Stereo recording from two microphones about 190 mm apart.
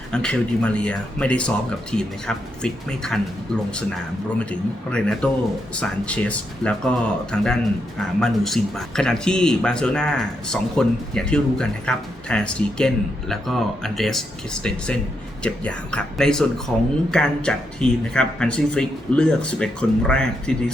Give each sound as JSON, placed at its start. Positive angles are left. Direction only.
{"t": 0.1, "sound": "speech", "side_deg": 5}
{"t": 4.9, "sound": "speech", "side_deg": 5}